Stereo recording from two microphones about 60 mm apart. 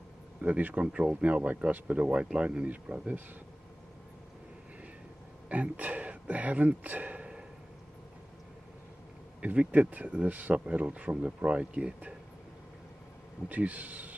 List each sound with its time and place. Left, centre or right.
0.4 s speech: right
5.5 s speech: right
9.4 s speech: right
13.5 s speech: right